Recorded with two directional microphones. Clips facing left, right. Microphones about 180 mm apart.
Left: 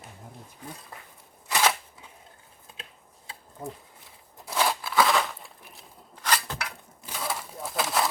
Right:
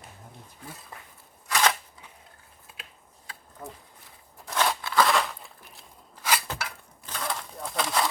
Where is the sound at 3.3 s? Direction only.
25° left (ahead or behind).